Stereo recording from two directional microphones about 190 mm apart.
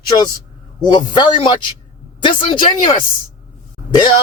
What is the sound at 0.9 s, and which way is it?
A man's voice, 25° left (ahead or behind).